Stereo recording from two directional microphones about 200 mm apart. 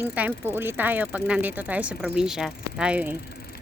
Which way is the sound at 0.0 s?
10° right (ahead or behind).